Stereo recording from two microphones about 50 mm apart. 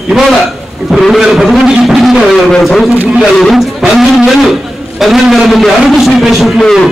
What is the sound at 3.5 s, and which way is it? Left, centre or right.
Music, centre.